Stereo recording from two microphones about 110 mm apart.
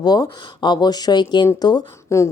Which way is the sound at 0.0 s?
40° left (ahead or behind).